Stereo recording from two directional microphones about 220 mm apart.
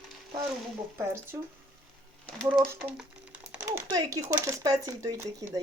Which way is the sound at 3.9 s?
15° right (ahead or behind).